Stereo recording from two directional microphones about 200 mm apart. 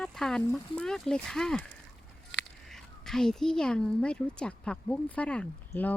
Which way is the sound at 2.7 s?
Centre (ahead or behind).